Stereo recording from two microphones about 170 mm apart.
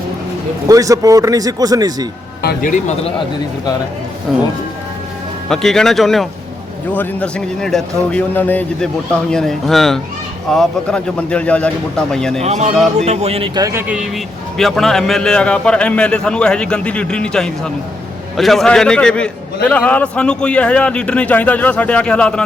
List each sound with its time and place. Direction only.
0.7 s speech: 20° right (ahead or behind)
2.4 s a man's voice: 65° left (ahead or behind)
4.3 s a man's voice: centre (ahead or behind)
5.5 s a man's voice: centre (ahead or behind)
12.4 s speech: 40° right (ahead or behind)
13.6 s a man's voice: 15° right (ahead or behind); by 22.4 s 5° left (ahead or behind)